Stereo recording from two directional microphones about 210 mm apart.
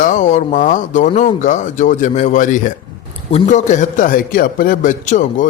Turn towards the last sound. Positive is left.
turn(degrees=35)  # may be behind; listen again after turning